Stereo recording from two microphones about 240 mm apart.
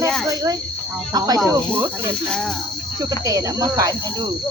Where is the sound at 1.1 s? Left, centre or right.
Centre.